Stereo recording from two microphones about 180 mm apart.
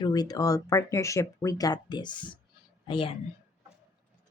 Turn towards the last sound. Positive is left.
turn(degrees=30)  # may be behind; listen again after turning